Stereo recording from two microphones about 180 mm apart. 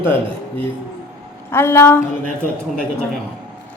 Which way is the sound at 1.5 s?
15° left (ahead or behind).